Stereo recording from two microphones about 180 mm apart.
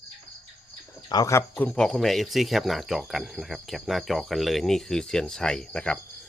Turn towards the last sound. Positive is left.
turn(degrees=5)  # may be behind; listen again after turning